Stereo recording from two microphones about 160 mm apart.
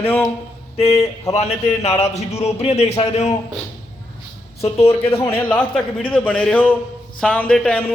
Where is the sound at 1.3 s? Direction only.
40° left (ahead or behind).